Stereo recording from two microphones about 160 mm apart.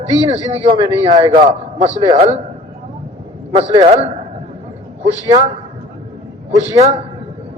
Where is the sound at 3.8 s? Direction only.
45° right (ahead or behind).